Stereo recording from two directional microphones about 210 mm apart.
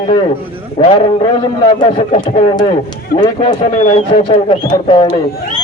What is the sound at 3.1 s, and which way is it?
Speech, 45° left (ahead or behind).